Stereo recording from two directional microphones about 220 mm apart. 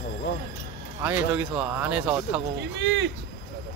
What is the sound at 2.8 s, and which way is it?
Speech, 55° right (ahead or behind).